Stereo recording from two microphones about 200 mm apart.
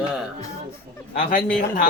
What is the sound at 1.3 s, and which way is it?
Speech, 45° left (ahead or behind).